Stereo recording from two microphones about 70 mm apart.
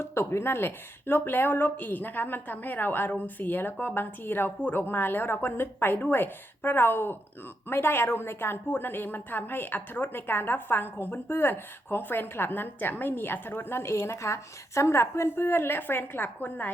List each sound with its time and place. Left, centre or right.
0.0 s speech: left